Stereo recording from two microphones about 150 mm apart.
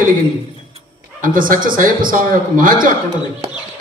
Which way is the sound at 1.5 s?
65° right (ahead or behind).